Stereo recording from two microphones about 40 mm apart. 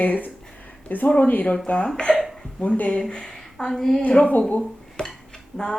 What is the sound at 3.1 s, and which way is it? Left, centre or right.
Speech, left.